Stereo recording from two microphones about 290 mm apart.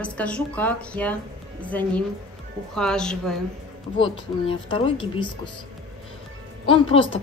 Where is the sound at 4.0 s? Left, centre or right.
Centre.